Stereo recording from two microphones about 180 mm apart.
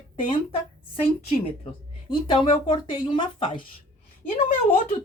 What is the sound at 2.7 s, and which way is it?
Speech, 25° left (ahead or behind).